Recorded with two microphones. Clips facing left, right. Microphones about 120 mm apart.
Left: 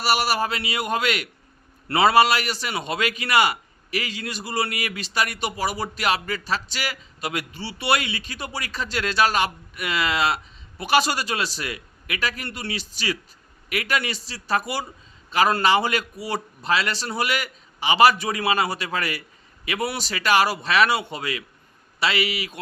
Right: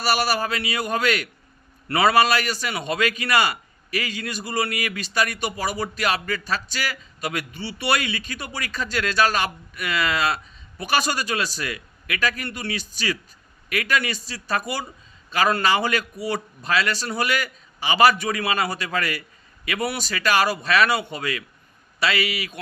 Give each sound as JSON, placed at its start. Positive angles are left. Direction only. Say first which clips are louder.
{"t": 0.0, "sound": "a man's voice", "louder": "even", "side_deg": 25}